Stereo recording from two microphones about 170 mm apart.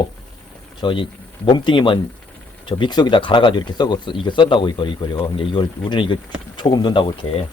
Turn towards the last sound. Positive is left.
turn(degrees=30)  # may be behind; listen again after turning